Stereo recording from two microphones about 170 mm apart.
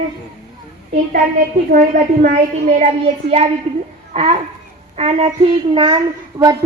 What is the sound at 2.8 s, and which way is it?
A child's voice, 40° right (ahead or behind).